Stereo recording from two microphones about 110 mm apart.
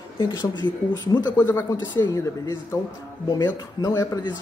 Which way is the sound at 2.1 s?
30° left (ahead or behind).